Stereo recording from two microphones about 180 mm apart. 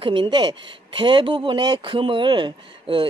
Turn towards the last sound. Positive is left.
turn(degrees=-25)  # may be behind; listen again after turning